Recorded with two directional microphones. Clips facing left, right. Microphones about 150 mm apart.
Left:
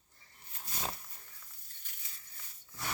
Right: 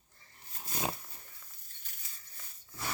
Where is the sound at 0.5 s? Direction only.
40° right (ahead or behind).